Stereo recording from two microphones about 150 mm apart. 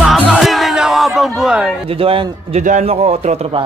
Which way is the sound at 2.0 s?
40° right (ahead or behind).